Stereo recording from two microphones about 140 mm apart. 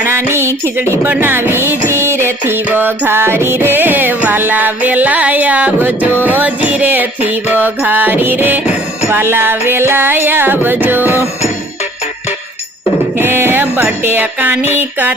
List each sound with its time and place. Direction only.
0.0 s a sound: 15° right (ahead or behind)
1.0 s music: 15° right (ahead or behind)
13.1 s music: 15° right (ahead or behind)